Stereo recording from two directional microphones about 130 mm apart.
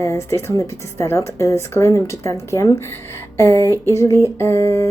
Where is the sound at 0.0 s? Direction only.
20° left (ahead or behind).